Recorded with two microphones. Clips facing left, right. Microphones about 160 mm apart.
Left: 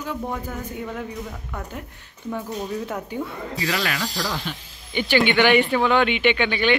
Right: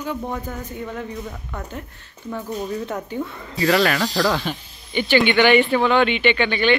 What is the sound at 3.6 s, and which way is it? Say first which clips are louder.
Speech: right 8 dB; 50° right (ahead or behind).